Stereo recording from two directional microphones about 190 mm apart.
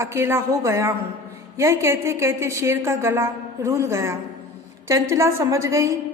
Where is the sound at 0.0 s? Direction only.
15° right (ahead or behind).